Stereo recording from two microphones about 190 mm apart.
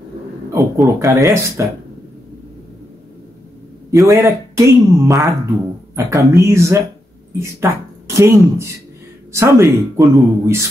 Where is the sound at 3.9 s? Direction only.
15° right (ahead or behind).